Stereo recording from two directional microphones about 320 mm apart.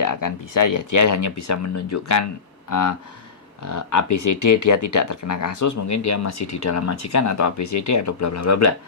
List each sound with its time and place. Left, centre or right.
0.0 s speech: left
2.6 s speech: left